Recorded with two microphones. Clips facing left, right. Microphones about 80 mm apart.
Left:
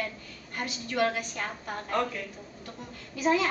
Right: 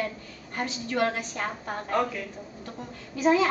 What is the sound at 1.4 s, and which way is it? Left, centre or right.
Speech, centre.